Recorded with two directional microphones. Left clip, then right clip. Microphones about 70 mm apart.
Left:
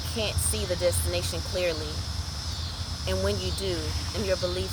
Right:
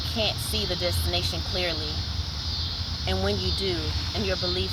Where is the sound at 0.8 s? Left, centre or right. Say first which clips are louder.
Even; left.